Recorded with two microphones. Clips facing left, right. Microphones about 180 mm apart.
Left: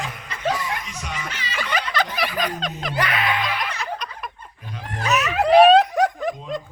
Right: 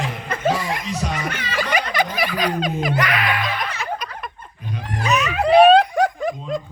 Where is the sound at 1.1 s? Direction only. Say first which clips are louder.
Right 5 dB; 60° right (ahead or behind).